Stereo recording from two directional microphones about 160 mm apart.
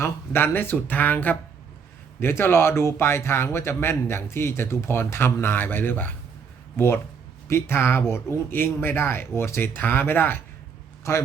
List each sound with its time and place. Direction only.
0.0 s a man's voice: 15° left (ahead or behind)